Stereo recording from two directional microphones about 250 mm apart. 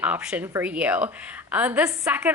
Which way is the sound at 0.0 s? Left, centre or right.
Centre.